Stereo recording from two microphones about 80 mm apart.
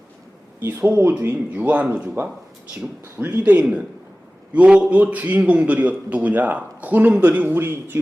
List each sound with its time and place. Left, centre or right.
0.6 s a man's voice: right
1.5 s a man's voice: centre